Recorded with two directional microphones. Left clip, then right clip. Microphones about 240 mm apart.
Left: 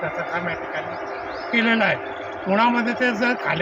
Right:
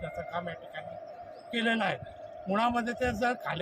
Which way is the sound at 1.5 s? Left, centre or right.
Right.